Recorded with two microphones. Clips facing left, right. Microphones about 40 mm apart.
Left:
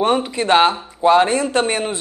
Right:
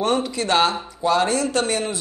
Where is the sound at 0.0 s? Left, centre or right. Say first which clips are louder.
Left 4 dB; left.